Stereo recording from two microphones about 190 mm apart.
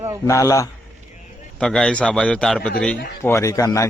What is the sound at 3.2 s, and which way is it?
Speech, 15° left (ahead or behind).